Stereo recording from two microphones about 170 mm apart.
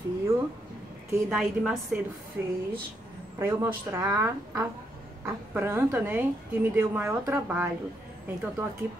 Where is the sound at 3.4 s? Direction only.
15° right (ahead or behind).